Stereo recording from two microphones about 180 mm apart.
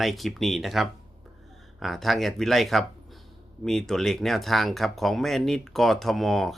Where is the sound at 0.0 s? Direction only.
Centre (ahead or behind).